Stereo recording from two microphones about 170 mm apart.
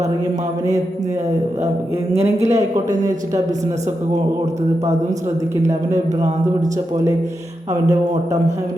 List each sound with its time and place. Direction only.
2.1 s a man's voice: 40° right (ahead or behind)
3.0 s speech: 20° right (ahead or behind)
7.7 s speech: 20° right (ahead or behind)